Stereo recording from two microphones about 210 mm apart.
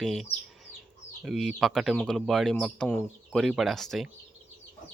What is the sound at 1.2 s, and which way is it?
Speech, centre (ahead or behind).